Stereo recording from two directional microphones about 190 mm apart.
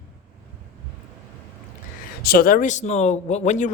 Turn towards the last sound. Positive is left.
turn(degrees=40)  # may be behind; listen again after turning